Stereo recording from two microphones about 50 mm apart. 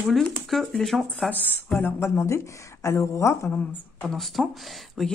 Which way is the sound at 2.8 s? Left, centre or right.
Left.